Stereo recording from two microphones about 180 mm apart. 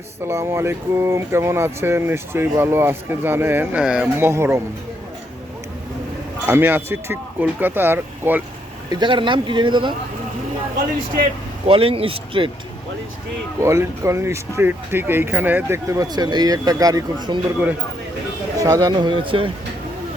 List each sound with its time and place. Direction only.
0.3 s speech: 15° right (ahead or behind)
6.4 s speech: 10° right (ahead or behind)
8.9 s speech: 25° right (ahead or behind)
11.7 s speech: 30° right (ahead or behind)
13.6 s speech: 15° right (ahead or behind)
18.6 s speech: 20° right (ahead or behind)